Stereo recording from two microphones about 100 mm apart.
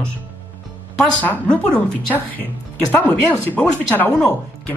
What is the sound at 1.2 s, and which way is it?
Speech, 15° left (ahead or behind).